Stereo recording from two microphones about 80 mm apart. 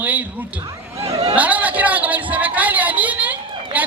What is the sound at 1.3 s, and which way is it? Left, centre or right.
Speech, centre.